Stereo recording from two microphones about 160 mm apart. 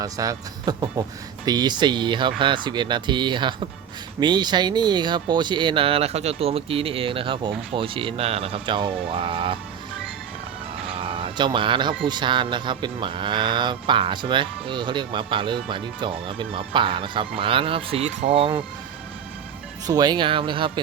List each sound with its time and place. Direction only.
0.0 s speech: 20° right (ahead or behind)
10.9 s music: 35° right (ahead or behind)
12.0 s speech: 30° right (ahead or behind)
19.9 s speech: 25° right (ahead or behind)